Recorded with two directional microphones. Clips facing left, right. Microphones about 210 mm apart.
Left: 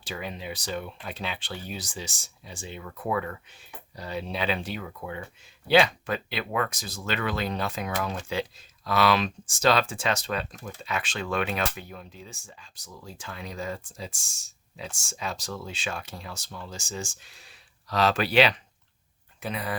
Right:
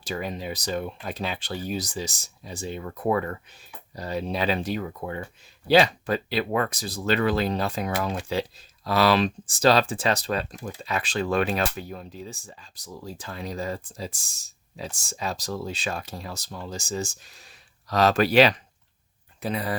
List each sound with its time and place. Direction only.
0.0 s speech: 40° right (ahead or behind)